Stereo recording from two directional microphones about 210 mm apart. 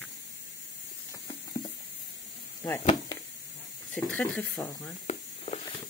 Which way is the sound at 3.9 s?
5° left (ahead or behind).